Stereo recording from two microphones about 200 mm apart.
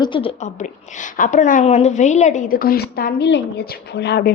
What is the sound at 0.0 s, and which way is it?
A woman's voice, 25° left (ahead or behind).